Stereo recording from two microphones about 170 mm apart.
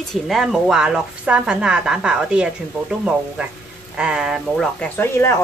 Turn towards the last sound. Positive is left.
turn(degrees=15)  # may be behind; listen again after turning